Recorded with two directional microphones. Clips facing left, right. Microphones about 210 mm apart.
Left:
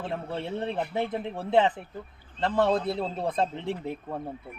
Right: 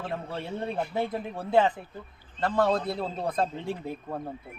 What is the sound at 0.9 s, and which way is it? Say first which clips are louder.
Speech: left 1 dB; 25° left (ahead or behind).